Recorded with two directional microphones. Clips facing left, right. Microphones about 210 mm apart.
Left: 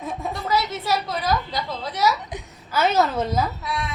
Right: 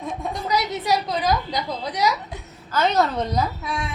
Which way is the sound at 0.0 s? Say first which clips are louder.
Even; centre (ahead or behind).